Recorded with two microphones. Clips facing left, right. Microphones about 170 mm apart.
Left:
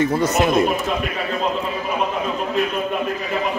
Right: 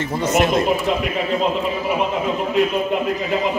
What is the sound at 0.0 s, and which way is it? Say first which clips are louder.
Speech: left 1 dB; 10° left (ahead or behind).